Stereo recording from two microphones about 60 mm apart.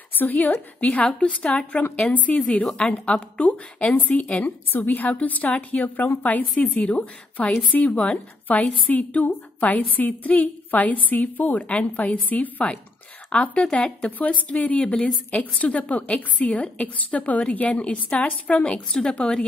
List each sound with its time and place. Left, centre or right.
0.2 s a woman's voice: left; by 19.4 s centre